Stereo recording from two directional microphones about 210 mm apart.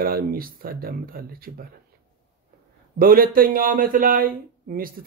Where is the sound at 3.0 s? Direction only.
45° right (ahead or behind).